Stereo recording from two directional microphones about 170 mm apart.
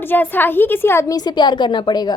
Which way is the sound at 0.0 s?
10° left (ahead or behind).